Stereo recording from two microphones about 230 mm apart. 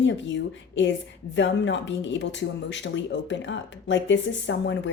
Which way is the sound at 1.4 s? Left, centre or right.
Left.